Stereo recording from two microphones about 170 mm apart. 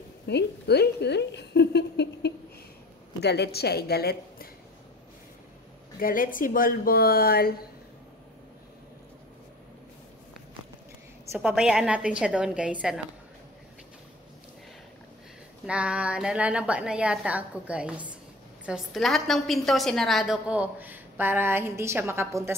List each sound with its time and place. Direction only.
0.3 s a woman's voice: 80° left
5.9 s speech: 55° left (ahead or behind)
11.3 s a woman's voice: 5° right (ahead or behind)
15.6 s a woman's voice: 5° right (ahead or behind)